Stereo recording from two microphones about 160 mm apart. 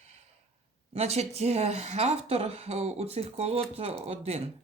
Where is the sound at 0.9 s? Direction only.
40° right (ahead or behind).